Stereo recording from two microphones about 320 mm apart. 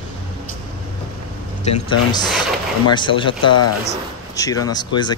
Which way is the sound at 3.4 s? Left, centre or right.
Left.